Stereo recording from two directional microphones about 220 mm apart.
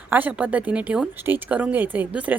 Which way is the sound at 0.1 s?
5° right (ahead or behind).